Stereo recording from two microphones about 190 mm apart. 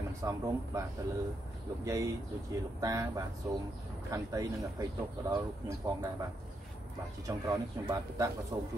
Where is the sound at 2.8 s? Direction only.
20° right (ahead or behind).